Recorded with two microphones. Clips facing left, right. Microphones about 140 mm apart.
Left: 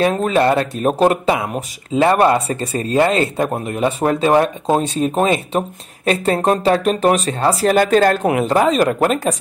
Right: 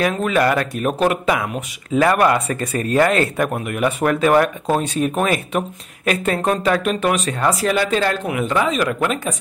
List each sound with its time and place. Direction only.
0.1 s speech: 35° left (ahead or behind)
7.7 s speech: 45° left (ahead or behind)